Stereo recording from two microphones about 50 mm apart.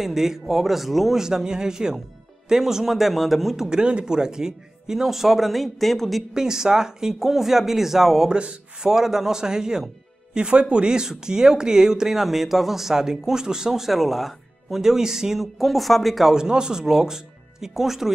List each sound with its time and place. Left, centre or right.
0.0 s speech: centre
6.3 s speech: centre
8.3 s speech: centre
16.3 s speech: centre